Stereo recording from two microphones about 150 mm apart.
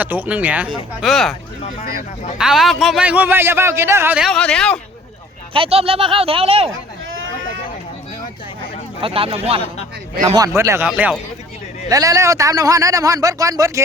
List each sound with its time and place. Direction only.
0.0 s a man's voice: 10° right (ahead or behind)
2.4 s a man's voice: centre (ahead or behind)
4.2 s speech: 5° left (ahead or behind)
5.5 s speech: 40° right (ahead or behind)
9.0 s speech: 40° right (ahead or behind)
10.2 s speech: 20° right (ahead or behind)
10.8 s speech: 5° right (ahead or behind)
11.9 s speech: 25° right (ahead or behind)